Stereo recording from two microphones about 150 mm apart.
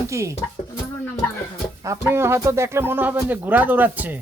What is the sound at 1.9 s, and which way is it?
Speech, 15° right (ahead or behind).